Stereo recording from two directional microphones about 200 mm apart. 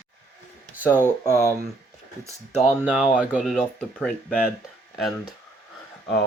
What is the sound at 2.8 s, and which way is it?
Speech, 5° right (ahead or behind).